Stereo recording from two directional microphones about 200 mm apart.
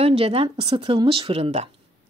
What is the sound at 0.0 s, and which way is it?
Speech, 30° right (ahead or behind).